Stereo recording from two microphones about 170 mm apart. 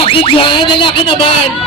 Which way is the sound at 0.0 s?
30° left (ahead or behind).